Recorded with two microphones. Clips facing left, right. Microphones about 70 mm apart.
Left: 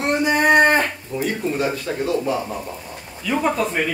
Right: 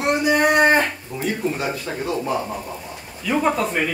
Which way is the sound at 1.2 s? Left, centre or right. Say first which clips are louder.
Left 2 dB; centre.